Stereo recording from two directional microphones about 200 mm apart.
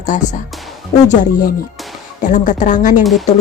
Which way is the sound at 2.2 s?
40° left (ahead or behind).